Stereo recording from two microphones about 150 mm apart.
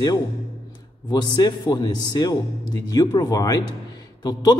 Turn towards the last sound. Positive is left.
turn(degrees=25)  # may be behind; listen again after turning